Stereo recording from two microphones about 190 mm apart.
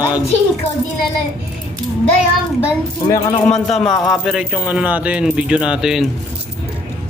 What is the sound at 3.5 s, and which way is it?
Speech, centre (ahead or behind).